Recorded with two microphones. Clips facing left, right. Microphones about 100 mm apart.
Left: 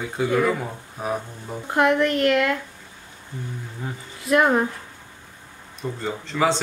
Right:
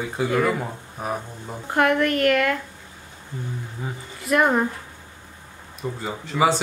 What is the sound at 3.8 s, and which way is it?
Speech, centre (ahead or behind).